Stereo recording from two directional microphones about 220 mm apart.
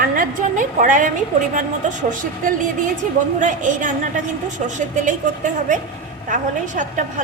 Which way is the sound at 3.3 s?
35° right (ahead or behind).